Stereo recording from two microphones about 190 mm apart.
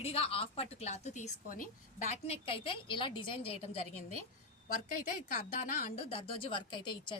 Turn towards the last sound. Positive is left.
turn(degrees=25)  # may be behind; listen again after turning